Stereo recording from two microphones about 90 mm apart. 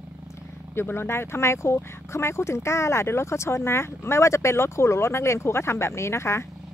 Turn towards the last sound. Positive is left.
turn(degrees=30)  # may be behind; listen again after turning